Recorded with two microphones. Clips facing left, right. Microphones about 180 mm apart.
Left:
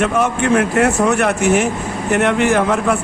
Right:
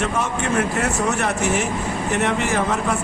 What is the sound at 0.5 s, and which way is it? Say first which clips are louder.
Speech: left 6 dB; 65° left (ahead or behind).